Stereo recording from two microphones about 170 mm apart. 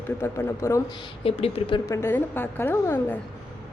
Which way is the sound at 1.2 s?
35° left (ahead or behind).